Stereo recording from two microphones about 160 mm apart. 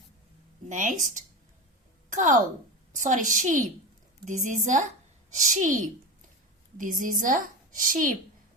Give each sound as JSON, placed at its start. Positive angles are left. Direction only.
{"t": 0.7, "sound": "a woman's voice", "side_deg": -50}